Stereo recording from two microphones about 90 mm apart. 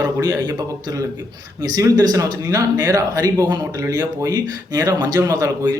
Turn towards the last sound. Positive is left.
turn(degrees=-40)  # may be behind; listen again after turning